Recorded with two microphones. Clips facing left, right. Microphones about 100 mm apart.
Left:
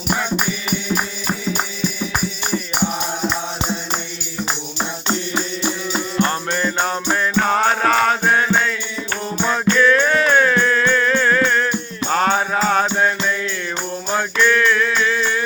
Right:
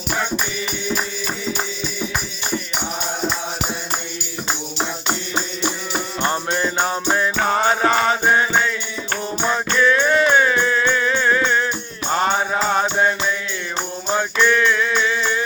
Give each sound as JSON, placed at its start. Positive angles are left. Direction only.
{"t": 6.1, "sound": "music", "side_deg": -20}
{"t": 14.3, "sound": "music", "side_deg": -15}